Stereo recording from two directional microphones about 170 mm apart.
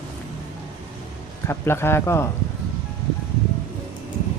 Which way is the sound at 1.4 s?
15° left (ahead or behind).